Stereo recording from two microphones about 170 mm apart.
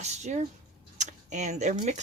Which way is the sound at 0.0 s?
40° right (ahead or behind).